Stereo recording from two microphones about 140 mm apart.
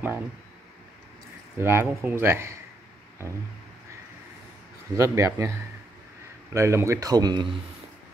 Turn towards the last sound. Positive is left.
turn(degrees=-30)  # may be behind; listen again after turning